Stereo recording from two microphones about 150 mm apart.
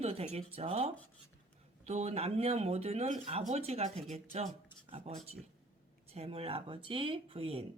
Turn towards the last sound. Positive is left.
turn(degrees=-40)  # may be behind; listen again after turning